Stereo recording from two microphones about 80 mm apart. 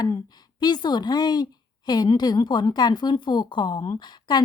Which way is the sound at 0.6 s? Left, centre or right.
Left.